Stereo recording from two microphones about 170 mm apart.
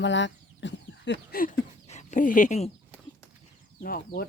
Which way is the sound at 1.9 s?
45° left (ahead or behind).